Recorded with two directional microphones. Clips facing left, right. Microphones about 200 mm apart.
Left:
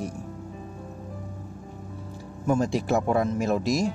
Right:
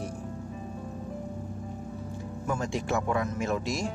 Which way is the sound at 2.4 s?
35° left (ahead or behind).